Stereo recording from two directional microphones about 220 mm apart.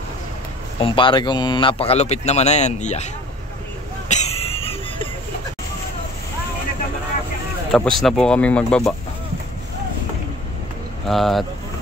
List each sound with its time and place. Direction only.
0.7 s speech: 25° left (ahead or behind)
4.1 s a sound: 30° left (ahead or behind)
7.7 s speech: centre (ahead or behind)
11.1 s speech: centre (ahead or behind)